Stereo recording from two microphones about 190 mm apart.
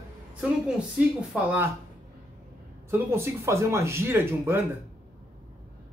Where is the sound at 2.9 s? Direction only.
15° right (ahead or behind).